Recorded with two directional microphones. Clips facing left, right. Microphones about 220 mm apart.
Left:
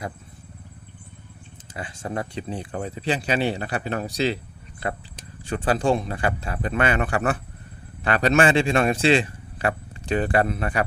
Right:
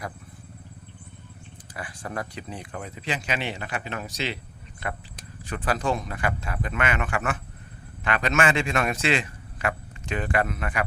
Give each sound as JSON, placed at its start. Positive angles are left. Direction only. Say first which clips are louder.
{"t": 1.7, "sound": "speech", "louder": "left 4 dB", "side_deg": 25}
{"t": 5.4, "sound": "a man's voice", "louder": "left 5 dB", "side_deg": 30}